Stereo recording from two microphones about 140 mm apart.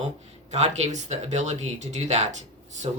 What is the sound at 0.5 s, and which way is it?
Speech, 55° right (ahead or behind).